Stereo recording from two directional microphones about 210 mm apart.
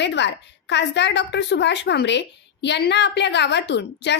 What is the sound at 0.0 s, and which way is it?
A woman's voice, 55° left (ahead or behind).